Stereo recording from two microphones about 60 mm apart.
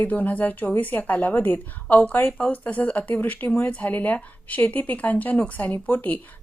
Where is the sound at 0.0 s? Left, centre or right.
Left.